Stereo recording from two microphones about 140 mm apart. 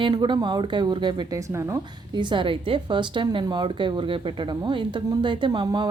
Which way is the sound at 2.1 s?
35° right (ahead or behind).